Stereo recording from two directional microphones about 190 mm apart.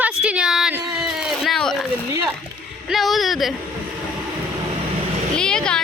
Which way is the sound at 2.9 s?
Centre (ahead or behind).